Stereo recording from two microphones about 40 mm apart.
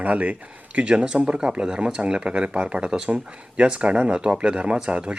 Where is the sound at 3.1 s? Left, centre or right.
Right.